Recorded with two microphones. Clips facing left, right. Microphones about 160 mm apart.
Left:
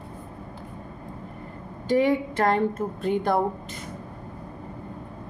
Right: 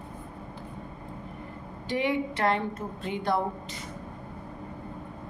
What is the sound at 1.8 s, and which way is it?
A woman's voice, 45° left (ahead or behind).